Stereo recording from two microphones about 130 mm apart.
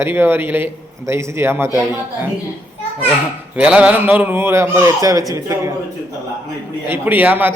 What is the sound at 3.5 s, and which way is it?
A man's voice, 10° right (ahead or behind).